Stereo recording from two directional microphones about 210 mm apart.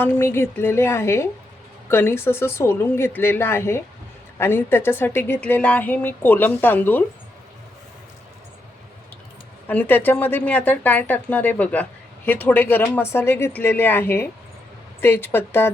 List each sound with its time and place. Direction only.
0.0 s a woman's voice: 10° left (ahead or behind)
9.6 s a woman's voice: 10° left (ahead or behind)